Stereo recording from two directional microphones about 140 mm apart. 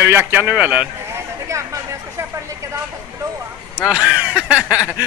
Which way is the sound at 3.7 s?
5° right (ahead or behind).